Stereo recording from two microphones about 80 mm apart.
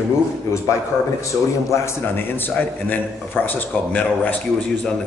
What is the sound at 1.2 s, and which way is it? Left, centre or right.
Speech, left.